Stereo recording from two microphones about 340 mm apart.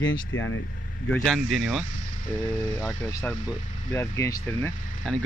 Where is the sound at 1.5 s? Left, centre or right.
Right.